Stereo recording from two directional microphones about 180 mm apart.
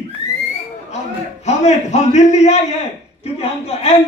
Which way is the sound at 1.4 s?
40° left (ahead or behind).